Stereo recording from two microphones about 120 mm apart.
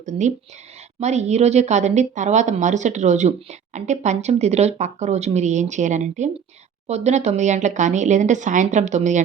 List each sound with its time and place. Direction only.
0.0 s speech: 90° right
0.9 s speech: 70° right (ahead or behind); by 6.3 s 85° right
6.8 s speech: 65° right (ahead or behind)